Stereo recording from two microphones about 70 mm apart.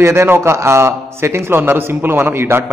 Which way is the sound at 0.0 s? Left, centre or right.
Right.